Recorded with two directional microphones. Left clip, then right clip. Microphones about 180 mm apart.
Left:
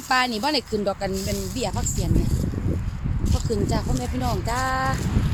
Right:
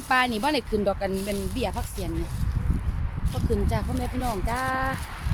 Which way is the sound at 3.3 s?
25° left (ahead or behind).